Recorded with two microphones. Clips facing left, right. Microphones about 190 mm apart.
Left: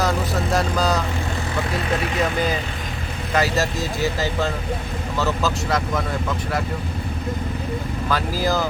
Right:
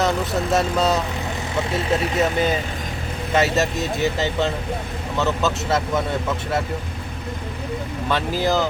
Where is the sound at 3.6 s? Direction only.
Centre (ahead or behind).